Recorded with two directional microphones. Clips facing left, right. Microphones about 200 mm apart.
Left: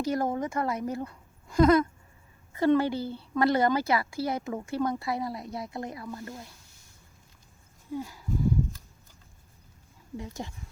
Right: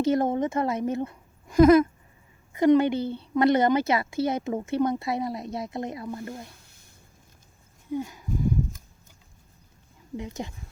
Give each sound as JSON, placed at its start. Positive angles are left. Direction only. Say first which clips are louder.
{"t": 0.0, "sound": "a woman's voice", "louder": "right 5 dB", "side_deg": -25}
{"t": 7.9, "sound": "speech", "louder": "right 4 dB", "side_deg": -20}
{"t": 10.2, "sound": "a woman's voice", "louder": "right 3 dB", "side_deg": -20}